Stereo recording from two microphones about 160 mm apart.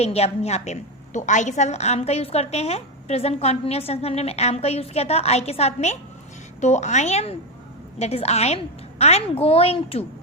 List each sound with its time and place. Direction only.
0.0 s a woman's voice: 40° left (ahead or behind)